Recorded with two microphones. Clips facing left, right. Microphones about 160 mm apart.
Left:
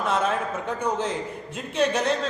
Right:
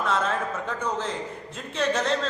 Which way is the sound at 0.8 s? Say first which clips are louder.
Left 4 dB; 15° left (ahead or behind).